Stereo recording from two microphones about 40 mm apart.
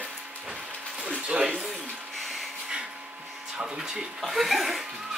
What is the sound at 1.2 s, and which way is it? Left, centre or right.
Speech, right.